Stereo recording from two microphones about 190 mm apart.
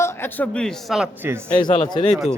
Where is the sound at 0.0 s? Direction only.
10° left (ahead or behind); by 1.4 s 5° right (ahead or behind).